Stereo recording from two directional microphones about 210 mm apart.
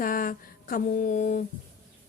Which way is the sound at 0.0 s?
40° left (ahead or behind).